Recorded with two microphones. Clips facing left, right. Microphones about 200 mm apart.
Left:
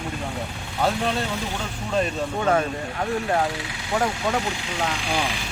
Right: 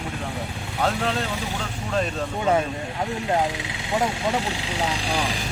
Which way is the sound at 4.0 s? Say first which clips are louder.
Even; centre (ahead or behind).